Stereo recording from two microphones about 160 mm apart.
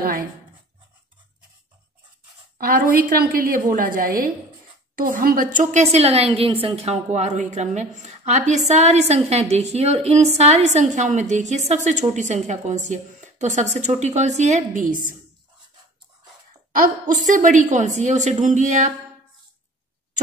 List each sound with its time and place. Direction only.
0.0 s a woman's voice: 65° right (ahead or behind)
2.6 s a woman's voice: 60° right (ahead or behind)
17.0 s a woman's voice: 50° right (ahead or behind)